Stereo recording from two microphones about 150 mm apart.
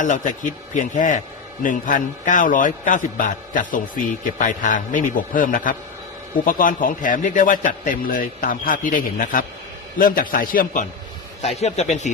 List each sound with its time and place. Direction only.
0.0 s a man's voice: 60° left (ahead or behind)
11.4 s a man's voice: 45° left (ahead or behind)